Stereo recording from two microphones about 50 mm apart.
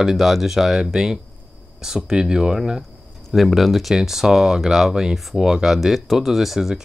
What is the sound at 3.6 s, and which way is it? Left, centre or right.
Speech, centre.